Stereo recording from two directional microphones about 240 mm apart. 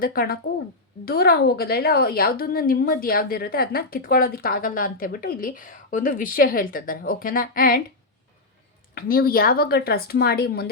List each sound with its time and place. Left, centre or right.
0.0 s a woman's voice: left
9.0 s a woman's voice: left